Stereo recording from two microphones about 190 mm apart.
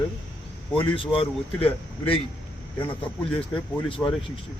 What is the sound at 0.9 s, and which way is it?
Speech, 30° left (ahead or behind).